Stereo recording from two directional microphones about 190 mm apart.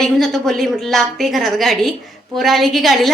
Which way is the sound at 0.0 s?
Centre (ahead or behind).